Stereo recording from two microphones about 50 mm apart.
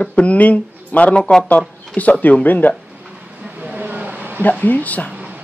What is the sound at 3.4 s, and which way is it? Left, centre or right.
Vehicle, right.